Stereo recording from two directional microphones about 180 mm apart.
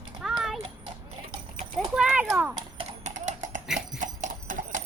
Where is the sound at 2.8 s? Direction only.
40° right (ahead or behind).